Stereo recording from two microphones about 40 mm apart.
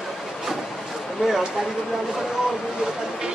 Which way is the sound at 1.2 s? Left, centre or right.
Centre.